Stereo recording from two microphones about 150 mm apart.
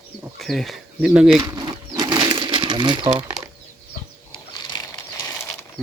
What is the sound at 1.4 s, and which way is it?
Crumpling, 25° right (ahead or behind).